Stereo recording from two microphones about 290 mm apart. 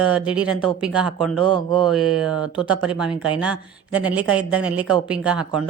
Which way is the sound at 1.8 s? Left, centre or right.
Centre.